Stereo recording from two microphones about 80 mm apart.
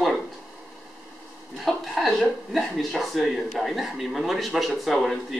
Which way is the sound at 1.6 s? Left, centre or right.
Centre.